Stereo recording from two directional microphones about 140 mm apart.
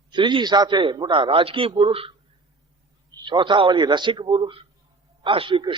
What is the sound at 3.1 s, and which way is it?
Speech, 30° right (ahead or behind).